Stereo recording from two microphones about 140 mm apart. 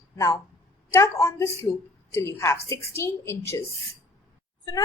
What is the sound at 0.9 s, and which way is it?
A woman's voice, 20° left (ahead or behind).